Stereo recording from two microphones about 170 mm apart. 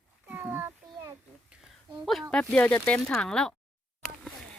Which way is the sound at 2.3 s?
5° left (ahead or behind).